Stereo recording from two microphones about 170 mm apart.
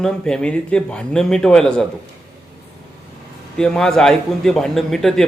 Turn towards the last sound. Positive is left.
turn(degrees=5)  # may be behind; listen again after turning